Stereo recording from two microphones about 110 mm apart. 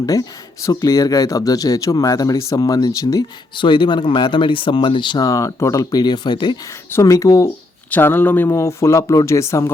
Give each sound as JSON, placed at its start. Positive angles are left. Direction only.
{"t": 0.0, "sound": "speech", "side_deg": 30}
{"t": 3.5, "sound": "speech", "side_deg": 45}
{"t": 6.9, "sound": "speech", "side_deg": 30}
{"t": 7.9, "sound": "speech", "side_deg": 15}